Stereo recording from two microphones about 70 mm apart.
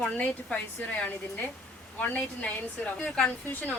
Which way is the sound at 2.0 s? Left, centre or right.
Left.